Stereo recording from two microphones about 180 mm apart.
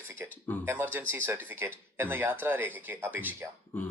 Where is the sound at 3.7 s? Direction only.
10° left (ahead or behind).